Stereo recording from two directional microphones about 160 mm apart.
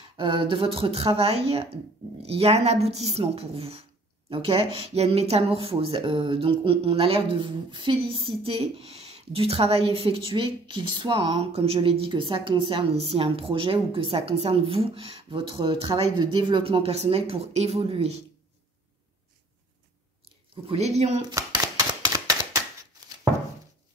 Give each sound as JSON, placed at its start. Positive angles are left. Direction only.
{"t": 0.2, "sound": "speech", "side_deg": -35}
{"t": 20.6, "sound": "speech", "side_deg": -40}
{"t": 21.3, "sound": "typewriter", "side_deg": -25}